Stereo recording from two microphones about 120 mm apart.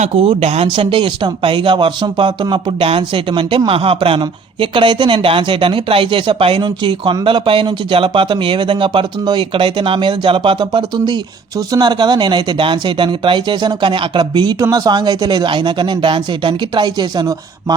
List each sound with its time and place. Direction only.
0.0 s speech: 60° right (ahead or behind)
0.7 s speech: 45° right (ahead or behind)